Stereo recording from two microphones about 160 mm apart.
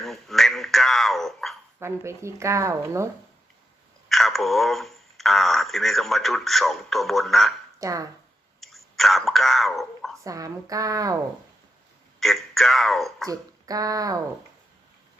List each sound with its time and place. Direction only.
0.0 s a sound: centre (ahead or behind)
1.8 s speech: 15° right (ahead or behind)
4.1 s speech: centre (ahead or behind)
7.8 s speech: 20° right (ahead or behind)
8.6 s whispering: centre (ahead or behind)
10.2 s speech: 20° right (ahead or behind)
12.2 s a man's voice: centre (ahead or behind)
13.2 s speech: 20° right (ahead or behind)